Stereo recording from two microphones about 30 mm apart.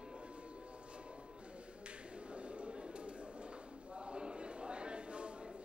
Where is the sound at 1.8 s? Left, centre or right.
Right.